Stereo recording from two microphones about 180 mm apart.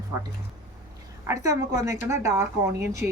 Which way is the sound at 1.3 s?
15° right (ahead or behind).